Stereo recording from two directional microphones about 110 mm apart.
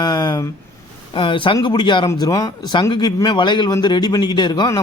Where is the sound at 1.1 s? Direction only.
50° left (ahead or behind).